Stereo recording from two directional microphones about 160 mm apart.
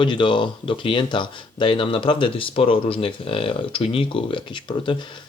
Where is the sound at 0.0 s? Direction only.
30° left (ahead or behind).